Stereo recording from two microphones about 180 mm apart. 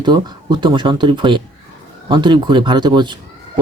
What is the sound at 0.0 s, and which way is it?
Speech, 25° right (ahead or behind).